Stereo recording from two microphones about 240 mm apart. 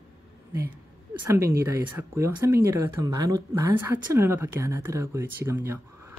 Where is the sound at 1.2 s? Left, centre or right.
Centre.